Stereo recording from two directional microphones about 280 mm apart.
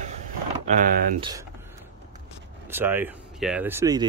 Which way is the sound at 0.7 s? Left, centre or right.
Right.